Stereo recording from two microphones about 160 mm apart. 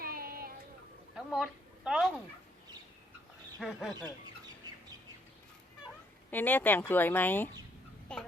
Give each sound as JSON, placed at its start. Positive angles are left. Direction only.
{"t": 0.0, "sound": "child singing", "side_deg": -65}
{"t": 1.1, "sound": "a woman's voice", "side_deg": -5}
{"t": 3.6, "sound": "speech", "side_deg": 0}
{"t": 6.3, "sound": "speech", "side_deg": 10}
{"t": 8.1, "sound": "a sound", "side_deg": 5}